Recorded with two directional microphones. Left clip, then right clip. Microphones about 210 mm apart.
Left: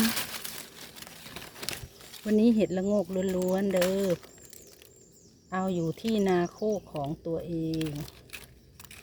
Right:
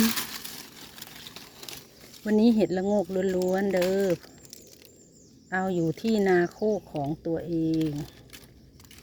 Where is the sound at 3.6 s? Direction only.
15° left (ahead or behind).